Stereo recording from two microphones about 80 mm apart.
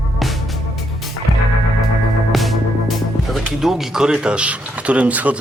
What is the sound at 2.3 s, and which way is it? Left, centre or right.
Music, centre.